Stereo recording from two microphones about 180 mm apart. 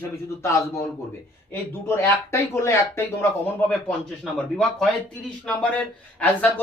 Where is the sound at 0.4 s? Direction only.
15° left (ahead or behind).